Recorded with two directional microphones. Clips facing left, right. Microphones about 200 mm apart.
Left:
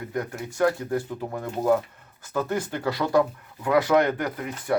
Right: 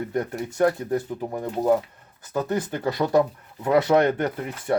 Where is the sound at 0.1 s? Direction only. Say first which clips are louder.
Right 3 dB; 25° right (ahead or behind).